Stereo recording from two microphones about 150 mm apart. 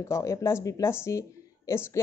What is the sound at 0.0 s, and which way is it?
A woman's voice, 20° left (ahead or behind).